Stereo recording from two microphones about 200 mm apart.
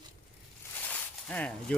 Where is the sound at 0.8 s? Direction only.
5° left (ahead or behind).